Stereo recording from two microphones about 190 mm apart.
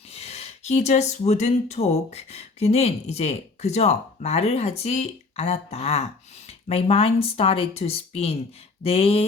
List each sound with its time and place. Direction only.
0.1 s speech: 35° left (ahead or behind)